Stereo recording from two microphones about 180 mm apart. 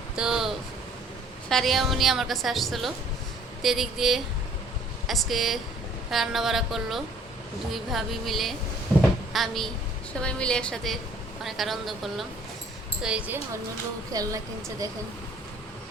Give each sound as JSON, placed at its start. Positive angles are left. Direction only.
{"t": 0.2, "sound": "a sound", "side_deg": 0}
{"t": 1.5, "sound": "a woman's voice", "side_deg": 0}
{"t": 14.1, "sound": "a woman's voice", "side_deg": -20}